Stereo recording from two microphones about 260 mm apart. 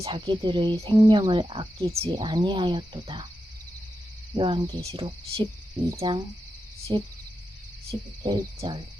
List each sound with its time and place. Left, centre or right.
0.0 s speech: centre
4.4 s speech: centre